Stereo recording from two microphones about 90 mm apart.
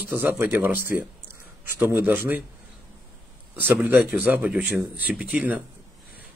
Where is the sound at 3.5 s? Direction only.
20° right (ahead or behind).